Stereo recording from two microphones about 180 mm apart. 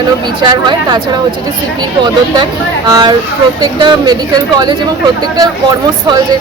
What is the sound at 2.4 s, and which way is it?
Speech, 20° right (ahead or behind).